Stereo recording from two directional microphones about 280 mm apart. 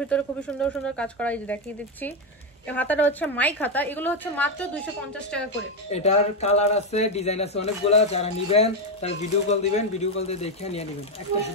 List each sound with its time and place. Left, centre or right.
0.1 s speech: centre
5.9 s speech: left